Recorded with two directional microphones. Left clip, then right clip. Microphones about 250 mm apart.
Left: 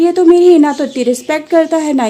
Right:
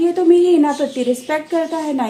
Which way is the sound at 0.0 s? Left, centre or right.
Left.